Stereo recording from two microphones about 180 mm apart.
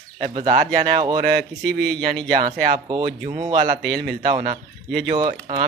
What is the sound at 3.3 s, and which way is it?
Speech, 25° right (ahead or behind).